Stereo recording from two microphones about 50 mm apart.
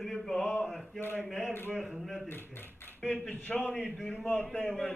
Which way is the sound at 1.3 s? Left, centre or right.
Centre.